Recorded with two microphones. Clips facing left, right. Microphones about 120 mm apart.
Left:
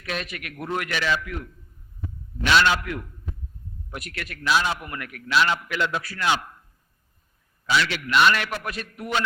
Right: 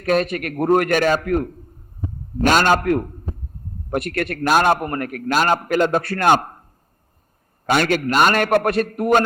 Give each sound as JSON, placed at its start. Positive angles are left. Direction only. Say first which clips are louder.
{"t": 0.0, "sound": "a man's voice", "louder": "right 13 dB", "side_deg": -45}
{"t": 7.7, "sound": "a man's voice", "louder": "right 6 dB", "side_deg": -50}